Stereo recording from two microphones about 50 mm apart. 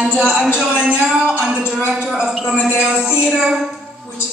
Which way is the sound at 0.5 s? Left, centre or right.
Centre.